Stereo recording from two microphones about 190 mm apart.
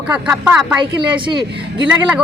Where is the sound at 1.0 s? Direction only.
25° right (ahead or behind).